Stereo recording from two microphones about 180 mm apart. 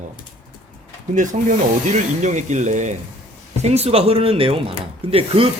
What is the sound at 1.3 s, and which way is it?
Speech, 40° right (ahead or behind).